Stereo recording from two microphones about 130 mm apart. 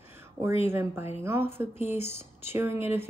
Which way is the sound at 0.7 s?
15° right (ahead or behind).